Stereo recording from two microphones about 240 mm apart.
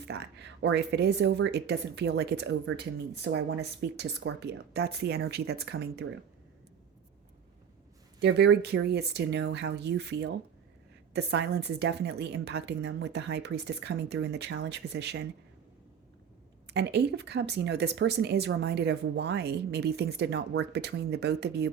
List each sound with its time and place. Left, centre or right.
0.1 s speech: right
8.2 s speech: right
16.6 s speech: right